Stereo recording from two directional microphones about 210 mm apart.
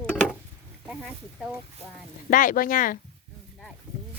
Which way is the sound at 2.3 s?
40° left (ahead or behind).